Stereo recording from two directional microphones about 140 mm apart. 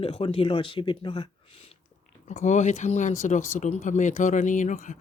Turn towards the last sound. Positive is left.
turn(degrees=60)  # may be behind; listen again after turning